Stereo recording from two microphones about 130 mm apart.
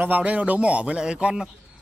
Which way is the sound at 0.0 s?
10° right (ahead or behind).